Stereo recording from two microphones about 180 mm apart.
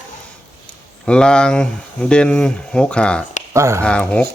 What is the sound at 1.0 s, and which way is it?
Speech, 5° left (ahead or behind).